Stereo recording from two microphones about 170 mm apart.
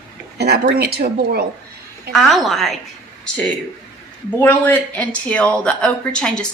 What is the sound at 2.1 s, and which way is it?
Speech, centre (ahead or behind).